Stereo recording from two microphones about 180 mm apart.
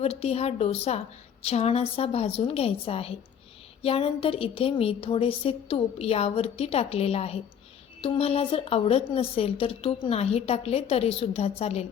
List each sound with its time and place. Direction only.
0.0 s a woman's voice: 35° left (ahead or behind)